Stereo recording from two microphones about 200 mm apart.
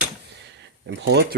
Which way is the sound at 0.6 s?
60° right (ahead or behind).